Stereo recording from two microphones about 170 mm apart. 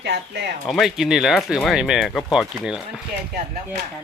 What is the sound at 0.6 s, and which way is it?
Speech, centre (ahead or behind).